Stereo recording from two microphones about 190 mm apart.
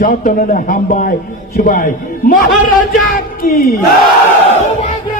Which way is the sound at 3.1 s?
50° left (ahead or behind).